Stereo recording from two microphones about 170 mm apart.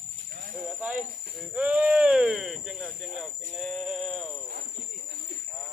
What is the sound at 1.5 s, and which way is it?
Speech, 10° right (ahead or behind).